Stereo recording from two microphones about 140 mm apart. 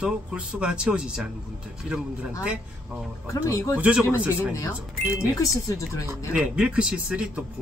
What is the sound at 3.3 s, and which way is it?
Speech, 25° left (ahead or behind).